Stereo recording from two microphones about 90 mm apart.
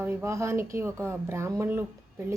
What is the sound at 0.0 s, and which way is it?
A woman's voice, 25° right (ahead or behind).